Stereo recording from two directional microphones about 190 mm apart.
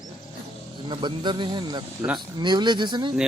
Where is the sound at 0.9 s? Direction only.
25° right (ahead or behind).